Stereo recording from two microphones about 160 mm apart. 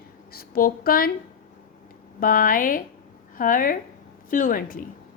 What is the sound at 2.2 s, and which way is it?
A woman's voice, 60° left (ahead or behind).